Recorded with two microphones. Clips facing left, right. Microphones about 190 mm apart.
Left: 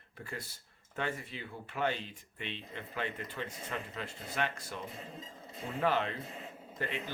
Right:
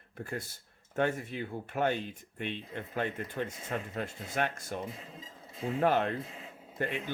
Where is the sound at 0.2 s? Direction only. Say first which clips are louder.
Right 5 dB; 45° right (ahead or behind).